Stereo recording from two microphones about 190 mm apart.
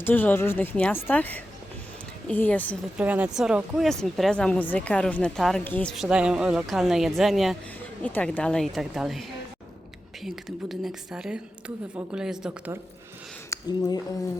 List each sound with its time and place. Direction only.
0.0 s speech: 10° left (ahead or behind)
3.0 s speech: 5° right (ahead or behind)
6.0 s speech: 5° right (ahead or behind)
10.2 s speech: centre (ahead or behind)
13.5 s speech: 20° left (ahead or behind)